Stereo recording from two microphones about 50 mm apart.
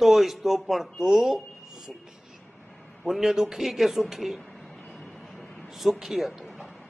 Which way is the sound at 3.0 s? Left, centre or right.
Centre.